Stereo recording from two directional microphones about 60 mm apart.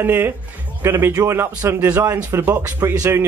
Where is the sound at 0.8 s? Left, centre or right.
Right.